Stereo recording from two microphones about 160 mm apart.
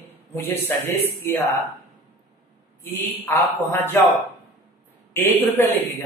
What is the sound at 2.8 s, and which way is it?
A man's voice, 15° left (ahead or behind).